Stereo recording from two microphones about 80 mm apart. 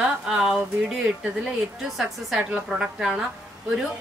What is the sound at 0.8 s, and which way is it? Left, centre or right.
A woman's voice, centre.